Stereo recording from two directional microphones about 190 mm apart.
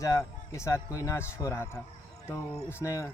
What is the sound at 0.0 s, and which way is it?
Speech, 15° left (ahead or behind).